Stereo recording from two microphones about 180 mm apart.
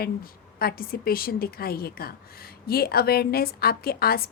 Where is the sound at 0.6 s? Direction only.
55° left (ahead or behind).